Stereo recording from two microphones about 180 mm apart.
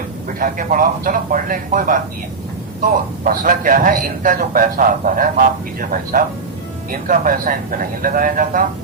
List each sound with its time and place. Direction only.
0.3 s a man's voice: 50° right (ahead or behind)